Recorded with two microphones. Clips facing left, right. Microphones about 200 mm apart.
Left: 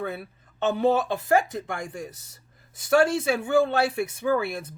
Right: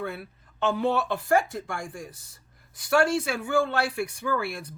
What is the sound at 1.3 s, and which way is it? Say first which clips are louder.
Speech: left 1 dB; 20° left (ahead or behind).